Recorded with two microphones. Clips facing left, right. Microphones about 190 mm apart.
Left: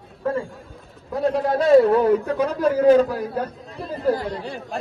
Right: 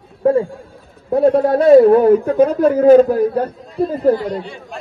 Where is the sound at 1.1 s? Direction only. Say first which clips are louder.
Right 8 dB; 55° right (ahead or behind).